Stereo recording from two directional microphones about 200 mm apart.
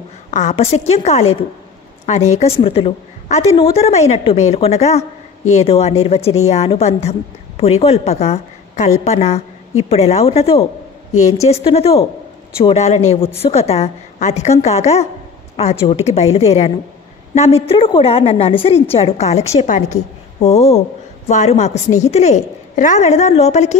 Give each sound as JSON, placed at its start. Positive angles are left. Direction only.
{"t": 0.3, "sound": "a woman's voice", "side_deg": 35}